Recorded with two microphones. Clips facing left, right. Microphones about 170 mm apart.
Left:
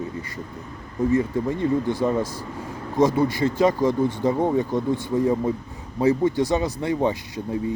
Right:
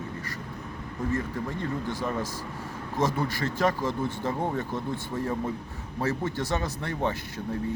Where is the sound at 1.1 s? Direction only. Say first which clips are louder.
Left 9 dB; 15° left (ahead or behind).